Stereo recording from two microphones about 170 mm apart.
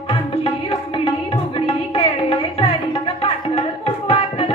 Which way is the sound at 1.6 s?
35° left (ahead or behind).